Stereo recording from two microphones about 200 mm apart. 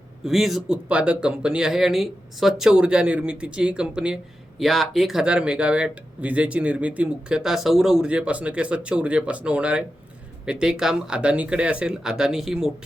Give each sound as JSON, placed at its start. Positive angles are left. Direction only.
{"t": 0.3, "sound": "speech", "side_deg": 0}